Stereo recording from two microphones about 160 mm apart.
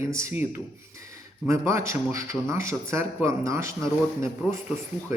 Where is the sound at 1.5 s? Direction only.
20° right (ahead or behind).